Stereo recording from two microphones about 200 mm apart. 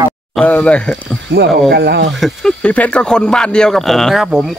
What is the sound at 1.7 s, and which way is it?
Speech, 55° right (ahead or behind).